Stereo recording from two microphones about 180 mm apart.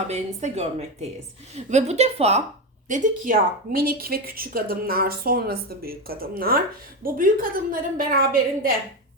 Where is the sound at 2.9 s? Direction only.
45° right (ahead or behind).